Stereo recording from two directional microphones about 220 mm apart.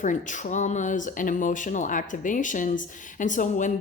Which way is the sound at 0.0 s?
35° left (ahead or behind).